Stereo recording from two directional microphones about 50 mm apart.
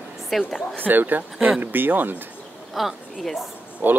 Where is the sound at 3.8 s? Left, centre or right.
Right.